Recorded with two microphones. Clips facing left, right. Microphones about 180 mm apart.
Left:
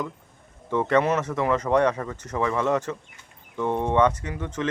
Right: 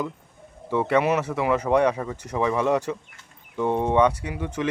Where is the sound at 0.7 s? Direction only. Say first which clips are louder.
Even; 10° right (ahead or behind).